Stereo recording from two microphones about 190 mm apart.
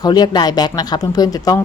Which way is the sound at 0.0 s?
20° left (ahead or behind).